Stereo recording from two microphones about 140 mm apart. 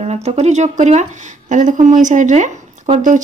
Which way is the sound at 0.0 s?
50° right (ahead or behind).